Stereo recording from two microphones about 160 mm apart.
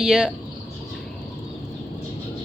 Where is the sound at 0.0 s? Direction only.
5° right (ahead or behind).